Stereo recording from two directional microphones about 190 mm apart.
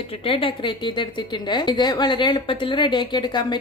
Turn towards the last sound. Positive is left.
turn(degrees=20)  # may be behind; listen again after turning